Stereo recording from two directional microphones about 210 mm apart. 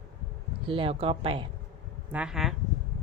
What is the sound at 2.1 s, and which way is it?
Speech, 5° right (ahead or behind).